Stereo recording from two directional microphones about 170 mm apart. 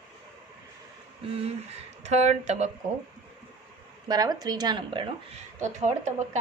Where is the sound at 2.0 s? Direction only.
40° right (ahead or behind).